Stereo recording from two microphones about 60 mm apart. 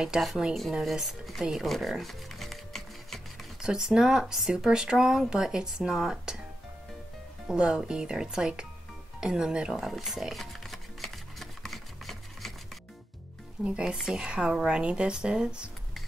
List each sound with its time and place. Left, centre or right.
0.0 s speech: centre
1.4 s music: centre
3.6 s speech: centre
7.4 s speech: centre
9.2 s music: centre
13.7 s speech: centre